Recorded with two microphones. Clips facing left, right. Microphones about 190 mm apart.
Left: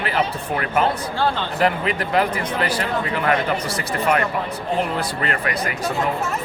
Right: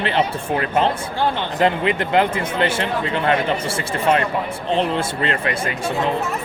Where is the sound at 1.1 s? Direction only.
15° right (ahead or behind).